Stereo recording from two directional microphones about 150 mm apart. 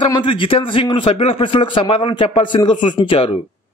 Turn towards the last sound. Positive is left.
turn(degrees=35)  # may be behind; listen again after turning